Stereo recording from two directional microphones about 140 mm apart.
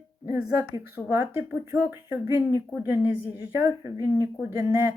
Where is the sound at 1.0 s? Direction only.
20° right (ahead or behind).